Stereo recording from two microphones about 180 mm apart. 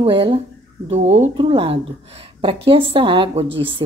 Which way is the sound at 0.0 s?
30° right (ahead or behind).